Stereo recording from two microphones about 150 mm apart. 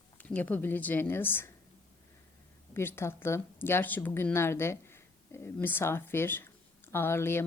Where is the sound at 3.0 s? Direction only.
15° left (ahead or behind).